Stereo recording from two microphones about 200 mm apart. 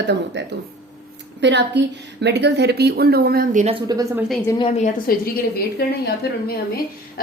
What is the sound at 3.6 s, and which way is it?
Speech, 25° right (ahead or behind).